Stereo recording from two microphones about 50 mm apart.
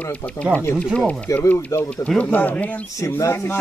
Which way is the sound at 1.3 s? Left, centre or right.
Left.